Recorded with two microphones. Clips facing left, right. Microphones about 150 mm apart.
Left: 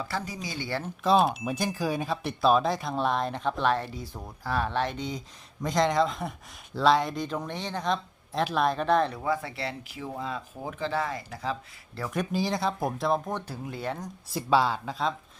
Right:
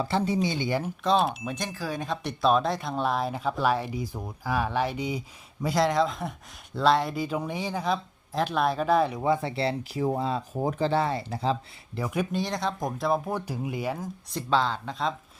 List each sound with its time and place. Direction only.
0.0 s speech: 30° right (ahead or behind)
1.0 s speech: 5° left (ahead or behind)
9.1 s speech: 20° right (ahead or behind)
11.9 s speech: 10° right (ahead or behind)
14.3 s speech: 10° left (ahead or behind)